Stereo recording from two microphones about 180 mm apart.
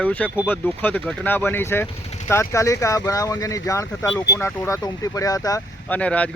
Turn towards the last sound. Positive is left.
turn(degrees=5)  # may be behind; listen again after turning